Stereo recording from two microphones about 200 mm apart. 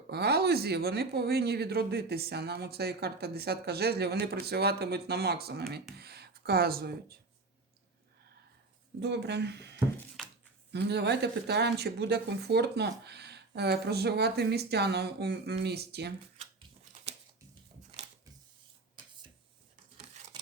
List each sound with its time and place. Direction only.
0.1 s speech: 55° right (ahead or behind)
9.0 s speech: 55° right (ahead or behind)
10.2 s a sound: centre (ahead or behind)
10.7 s speech: 55° right (ahead or behind)